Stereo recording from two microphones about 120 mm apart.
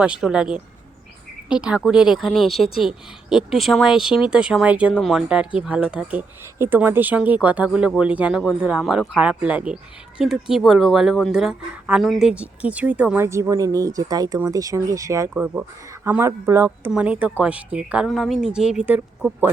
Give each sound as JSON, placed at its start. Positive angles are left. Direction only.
{"t": 0.0, "sound": "speech", "side_deg": -5}
{"t": 2.5, "sound": "speech", "side_deg": 55}
{"t": 2.8, "sound": "speech", "side_deg": -5}
{"t": 13.2, "sound": "speech", "side_deg": -25}
{"t": 15.3, "sound": "speech", "side_deg": -15}
{"t": 16.9, "sound": "speech", "side_deg": -10}